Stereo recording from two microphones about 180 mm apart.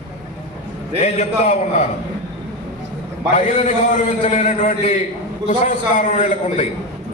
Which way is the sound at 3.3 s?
40° left (ahead or behind).